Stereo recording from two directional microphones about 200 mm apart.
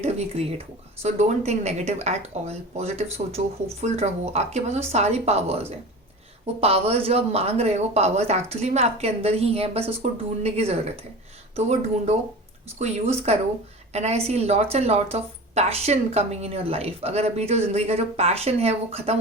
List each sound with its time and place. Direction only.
0.0 s a woman's voice: 30° right (ahead or behind)
13.3 s a woman's voice: 30° right (ahead or behind)